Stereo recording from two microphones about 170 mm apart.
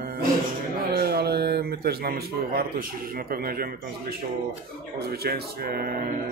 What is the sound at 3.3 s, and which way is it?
Speech, 60° right (ahead or behind).